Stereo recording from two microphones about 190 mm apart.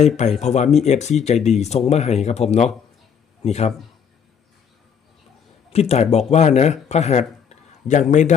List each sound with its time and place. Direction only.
0.2 s speech: 35° left (ahead or behind)
5.7 s speech: 35° left (ahead or behind)